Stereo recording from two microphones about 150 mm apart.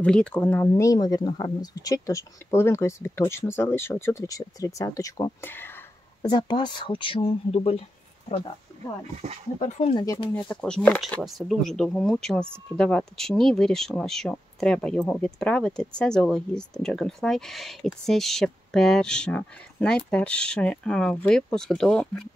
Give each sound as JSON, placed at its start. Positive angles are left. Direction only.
{"t": 0.0, "sound": "speech", "side_deg": 5}
{"t": 6.2, "sound": "speech", "side_deg": 30}
{"t": 9.6, "sound": "speech", "side_deg": 45}
{"t": 9.9, "sound": "speech", "side_deg": 30}
{"t": 10.3, "sound": "speech", "side_deg": 5}